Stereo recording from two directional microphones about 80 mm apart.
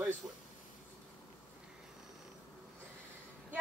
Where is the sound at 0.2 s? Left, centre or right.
Centre.